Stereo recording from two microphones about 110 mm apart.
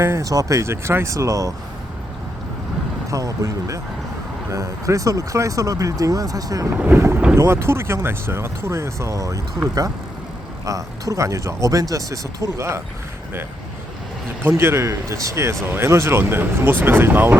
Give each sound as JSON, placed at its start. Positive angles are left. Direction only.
{"t": 0.0, "sound": "speech", "side_deg": -30}
{"t": 3.1, "sound": "speech", "side_deg": -30}
{"t": 6.7, "sound": "speech", "side_deg": -20}
{"t": 10.7, "sound": "speech", "side_deg": -30}
{"t": 14.4, "sound": "speech", "side_deg": -20}